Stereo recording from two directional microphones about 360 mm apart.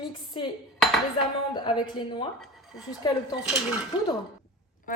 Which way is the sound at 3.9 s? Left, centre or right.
Centre.